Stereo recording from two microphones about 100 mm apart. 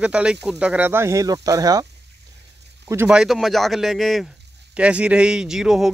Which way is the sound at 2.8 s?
25° right (ahead or behind).